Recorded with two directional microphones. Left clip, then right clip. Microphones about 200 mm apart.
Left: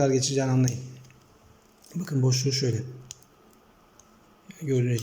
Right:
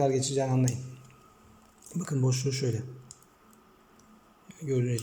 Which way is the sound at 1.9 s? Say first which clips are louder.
Left 3 dB; centre (ahead or behind).